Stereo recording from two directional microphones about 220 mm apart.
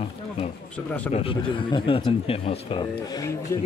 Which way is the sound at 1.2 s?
25° left (ahead or behind).